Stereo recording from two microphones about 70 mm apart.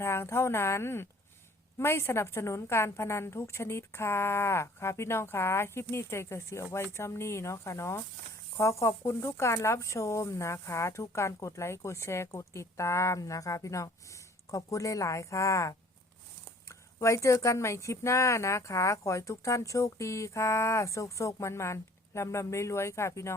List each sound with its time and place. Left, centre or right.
0.0 s a woman's voice: left